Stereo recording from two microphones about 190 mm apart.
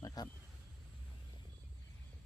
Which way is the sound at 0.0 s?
20° left (ahead or behind).